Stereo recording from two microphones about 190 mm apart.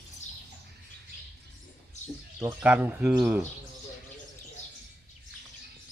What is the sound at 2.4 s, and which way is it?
Speech, 10° right (ahead or behind).